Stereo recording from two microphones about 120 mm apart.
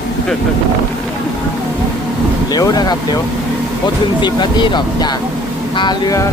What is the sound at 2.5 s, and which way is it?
Speech, 30° left (ahead or behind).